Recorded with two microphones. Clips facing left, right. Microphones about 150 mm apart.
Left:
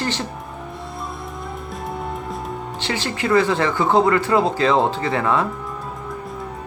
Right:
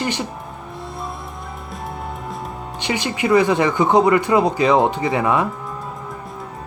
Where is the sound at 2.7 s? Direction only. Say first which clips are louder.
Right 4 dB; 15° right (ahead or behind).